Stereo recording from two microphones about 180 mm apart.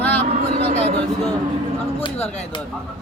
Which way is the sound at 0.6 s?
35° left (ahead or behind).